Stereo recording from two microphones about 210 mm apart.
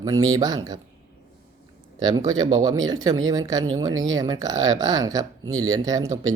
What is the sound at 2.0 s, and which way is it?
Speech, 20° right (ahead or behind).